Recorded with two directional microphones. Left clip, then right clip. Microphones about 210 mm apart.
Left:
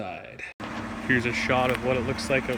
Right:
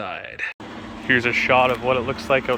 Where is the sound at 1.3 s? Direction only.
15° right (ahead or behind).